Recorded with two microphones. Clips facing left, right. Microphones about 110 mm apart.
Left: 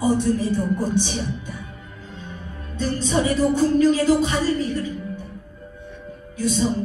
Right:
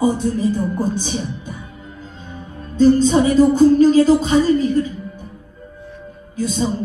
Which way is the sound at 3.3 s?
40° right (ahead or behind).